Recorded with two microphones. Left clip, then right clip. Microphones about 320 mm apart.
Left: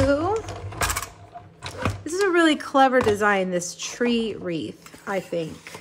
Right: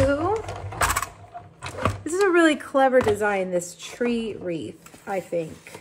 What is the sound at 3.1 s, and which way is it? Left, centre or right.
Speech, centre.